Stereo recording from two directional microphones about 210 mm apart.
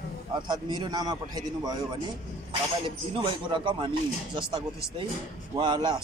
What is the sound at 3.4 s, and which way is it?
A man's voice, 25° right (ahead or behind).